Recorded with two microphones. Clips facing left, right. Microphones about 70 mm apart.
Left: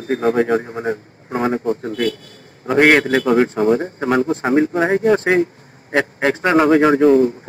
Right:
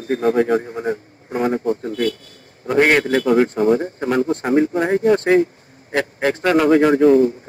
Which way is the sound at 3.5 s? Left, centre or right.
Left.